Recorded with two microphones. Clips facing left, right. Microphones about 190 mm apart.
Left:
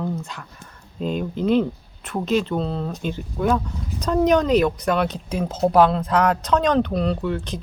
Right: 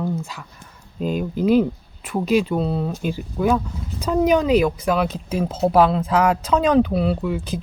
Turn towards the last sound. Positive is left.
turn(degrees=-5)  # may be behind; listen again after turning